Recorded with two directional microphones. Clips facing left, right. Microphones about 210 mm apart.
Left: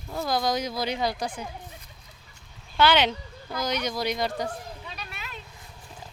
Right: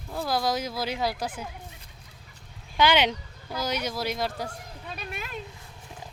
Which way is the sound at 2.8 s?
10° right (ahead or behind).